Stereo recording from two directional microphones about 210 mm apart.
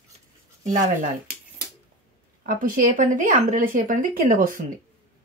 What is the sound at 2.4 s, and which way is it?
Speech, 40° right (ahead or behind).